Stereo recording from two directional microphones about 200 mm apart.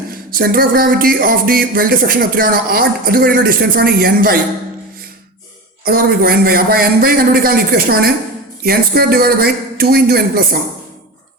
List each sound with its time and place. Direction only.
0.1 s music: 50° right (ahead or behind)
5.8 s music: 50° right (ahead or behind)